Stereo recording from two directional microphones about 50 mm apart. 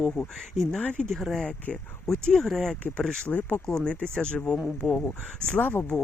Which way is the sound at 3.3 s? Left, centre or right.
Left.